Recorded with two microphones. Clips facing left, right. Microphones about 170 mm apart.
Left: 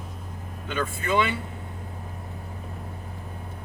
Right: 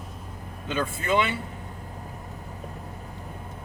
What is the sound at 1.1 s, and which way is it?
Speech, 20° right (ahead or behind).